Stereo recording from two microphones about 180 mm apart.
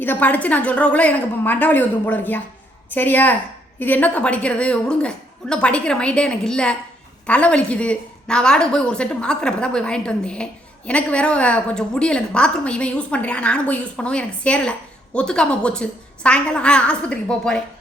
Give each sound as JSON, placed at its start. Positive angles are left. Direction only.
{"t": 0.0, "sound": "a woman's voice", "side_deg": 10}